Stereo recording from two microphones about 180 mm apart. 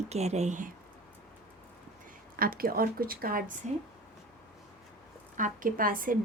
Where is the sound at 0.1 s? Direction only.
35° right (ahead or behind).